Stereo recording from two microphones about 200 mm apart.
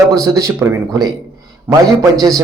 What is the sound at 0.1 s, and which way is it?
A man's voice, 15° right (ahead or behind).